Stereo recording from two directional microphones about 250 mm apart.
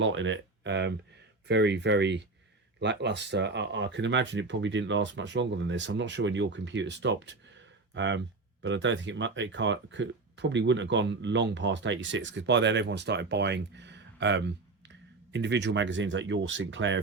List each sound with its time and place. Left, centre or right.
0.0 s speech: right